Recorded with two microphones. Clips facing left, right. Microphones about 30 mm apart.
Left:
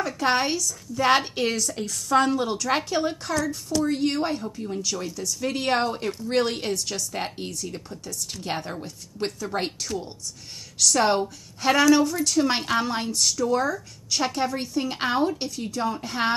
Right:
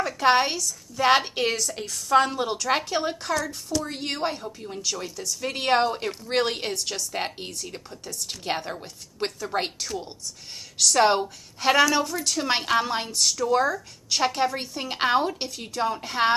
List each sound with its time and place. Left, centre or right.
0.0 s speech: centre